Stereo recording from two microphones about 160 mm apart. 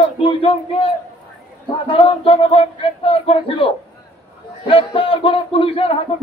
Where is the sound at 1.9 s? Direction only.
35° left (ahead or behind).